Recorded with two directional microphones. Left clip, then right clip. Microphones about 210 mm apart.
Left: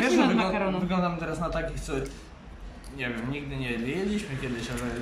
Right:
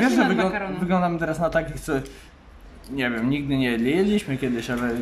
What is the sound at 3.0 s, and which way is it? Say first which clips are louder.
Speech: right 8 dB; 45° right (ahead or behind).